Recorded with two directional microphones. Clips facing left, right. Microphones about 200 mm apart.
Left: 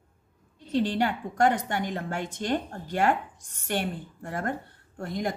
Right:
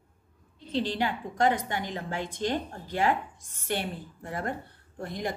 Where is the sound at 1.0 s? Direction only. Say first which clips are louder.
Left 2 dB; 50° left (ahead or behind).